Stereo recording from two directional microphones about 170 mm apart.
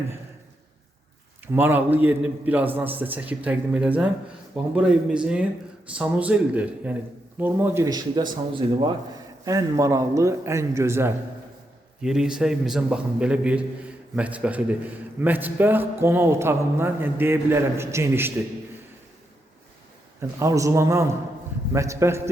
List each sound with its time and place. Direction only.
1.5 s a man's voice: 10° right (ahead or behind)
12.0 s a man's voice: 5° right (ahead or behind)
20.4 s a man's voice: 20° right (ahead or behind)